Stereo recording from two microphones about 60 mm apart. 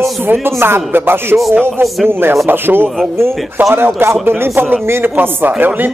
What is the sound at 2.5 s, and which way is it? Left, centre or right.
Speech, right.